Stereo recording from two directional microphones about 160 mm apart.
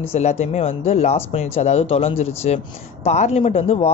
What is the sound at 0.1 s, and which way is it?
Speech, 45° left (ahead or behind).